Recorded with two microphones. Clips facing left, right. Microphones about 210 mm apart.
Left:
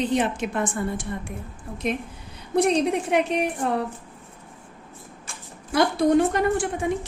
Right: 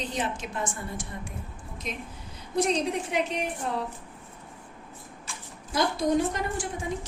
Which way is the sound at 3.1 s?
65° left (ahead or behind).